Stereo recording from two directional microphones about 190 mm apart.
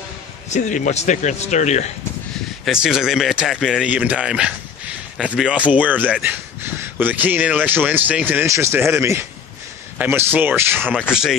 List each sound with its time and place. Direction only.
0.5 s a man's voice: 40° left (ahead or behind)
2.6 s a man's voice: centre (ahead or behind)